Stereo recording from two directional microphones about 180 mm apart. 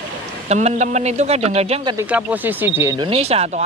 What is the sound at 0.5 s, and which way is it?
Speech, 40° right (ahead or behind).